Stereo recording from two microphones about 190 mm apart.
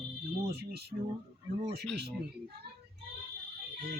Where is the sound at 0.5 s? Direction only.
55° right (ahead or behind).